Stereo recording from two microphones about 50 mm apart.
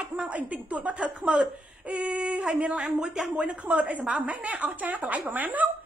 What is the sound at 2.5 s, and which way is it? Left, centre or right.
Speech, right.